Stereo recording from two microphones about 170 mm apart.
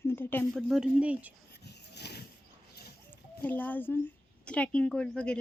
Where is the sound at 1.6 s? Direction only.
75° left (ahead or behind).